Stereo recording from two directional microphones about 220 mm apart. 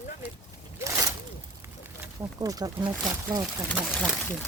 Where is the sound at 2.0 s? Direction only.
15° right (ahead or behind).